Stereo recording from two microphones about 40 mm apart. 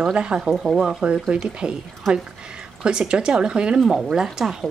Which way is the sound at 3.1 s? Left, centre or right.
Right.